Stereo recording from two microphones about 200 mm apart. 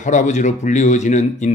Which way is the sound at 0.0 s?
40° left (ahead or behind).